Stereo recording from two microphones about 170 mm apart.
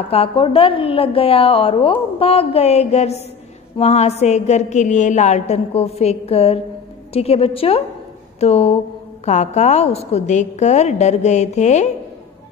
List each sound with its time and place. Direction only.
0.1 s a woman's voice: 35° left (ahead or behind)